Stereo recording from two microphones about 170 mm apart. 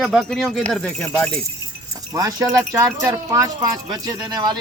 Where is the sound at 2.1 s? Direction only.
20° right (ahead or behind).